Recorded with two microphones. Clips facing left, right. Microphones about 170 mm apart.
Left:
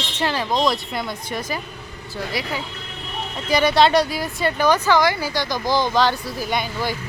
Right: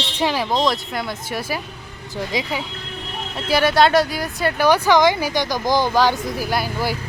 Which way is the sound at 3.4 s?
5° right (ahead or behind).